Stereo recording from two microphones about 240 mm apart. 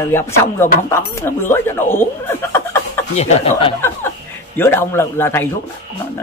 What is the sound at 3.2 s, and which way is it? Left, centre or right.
Speech, left.